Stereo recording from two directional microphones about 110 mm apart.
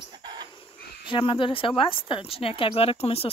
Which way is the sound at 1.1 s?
50° left (ahead or behind).